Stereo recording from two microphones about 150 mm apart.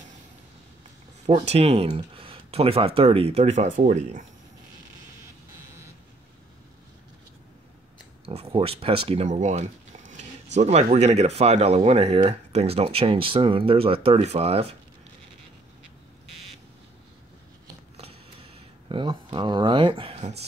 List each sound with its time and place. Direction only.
1.2 s speech: 45° right (ahead or behind)
8.3 s speech: 40° right (ahead or behind)
17.9 s a sound: 40° right (ahead or behind)